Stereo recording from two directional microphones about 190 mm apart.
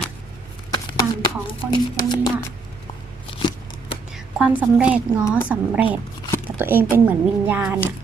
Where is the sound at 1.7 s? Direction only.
20° left (ahead or behind).